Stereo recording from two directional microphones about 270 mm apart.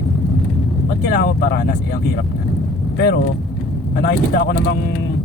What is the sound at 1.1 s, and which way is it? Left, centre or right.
Speech, left.